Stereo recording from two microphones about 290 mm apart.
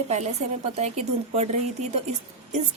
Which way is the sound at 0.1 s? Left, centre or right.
Right.